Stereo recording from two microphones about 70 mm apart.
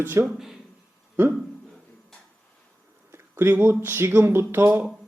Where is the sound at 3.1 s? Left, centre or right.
Right.